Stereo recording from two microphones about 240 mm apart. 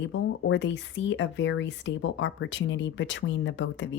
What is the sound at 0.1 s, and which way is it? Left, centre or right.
Speech, left.